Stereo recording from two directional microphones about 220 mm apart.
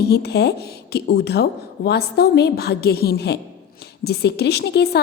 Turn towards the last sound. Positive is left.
turn(degrees=45)  # may be behind; listen again after turning